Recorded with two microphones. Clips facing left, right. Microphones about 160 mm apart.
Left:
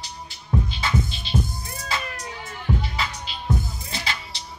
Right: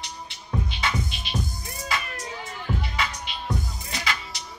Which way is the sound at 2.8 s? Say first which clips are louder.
Even; 30° left (ahead or behind).